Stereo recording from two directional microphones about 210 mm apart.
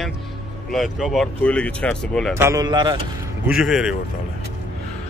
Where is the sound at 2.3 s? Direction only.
15° right (ahead or behind).